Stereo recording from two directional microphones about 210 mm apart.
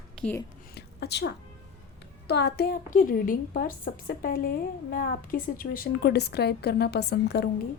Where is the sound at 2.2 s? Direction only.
50° left (ahead or behind).